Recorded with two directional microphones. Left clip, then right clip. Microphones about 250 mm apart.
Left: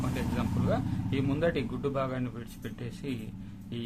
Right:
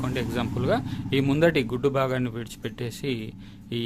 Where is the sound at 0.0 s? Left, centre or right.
Right.